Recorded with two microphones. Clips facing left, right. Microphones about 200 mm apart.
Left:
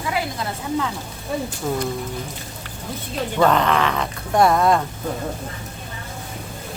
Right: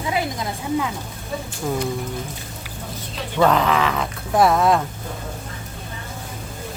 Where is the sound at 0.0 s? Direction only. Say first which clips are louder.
Right 1 dB; 20° right (ahead or behind).